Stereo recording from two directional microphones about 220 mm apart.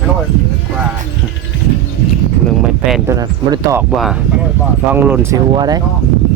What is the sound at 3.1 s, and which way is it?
Speech, 15° right (ahead or behind).